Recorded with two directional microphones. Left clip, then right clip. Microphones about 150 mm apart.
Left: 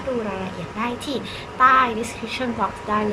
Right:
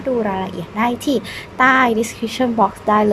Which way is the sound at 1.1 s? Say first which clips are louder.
Right 7 dB; 45° right (ahead or behind).